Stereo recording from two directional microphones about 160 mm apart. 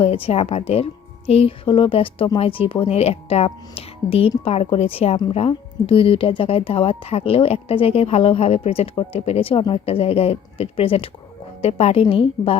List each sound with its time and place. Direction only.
0.0 s speech: 40° left (ahead or behind)